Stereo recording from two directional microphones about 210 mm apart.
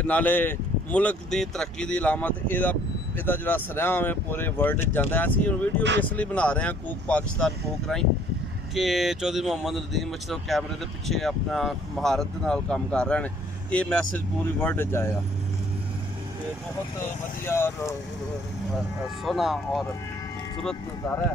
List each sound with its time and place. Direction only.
0.0 s speech: 5° left (ahead or behind)
5.8 s speech: 55° right (ahead or behind)
6.0 s speech: 5° left (ahead or behind)
17.5 s speech: 10° left (ahead or behind)
19.2 s speech: centre (ahead or behind)